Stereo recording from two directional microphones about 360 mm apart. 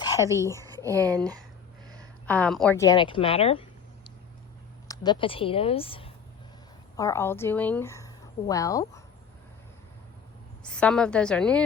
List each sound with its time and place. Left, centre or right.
0.0 s a sound: centre
0.6 s a sound: centre
0.9 s speech: centre
2.2 s a woman's voice: centre
4.9 s a woman's voice: centre
10.6 s a woman's voice: centre